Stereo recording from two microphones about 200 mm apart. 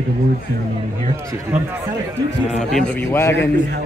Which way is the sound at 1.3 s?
15° right (ahead or behind).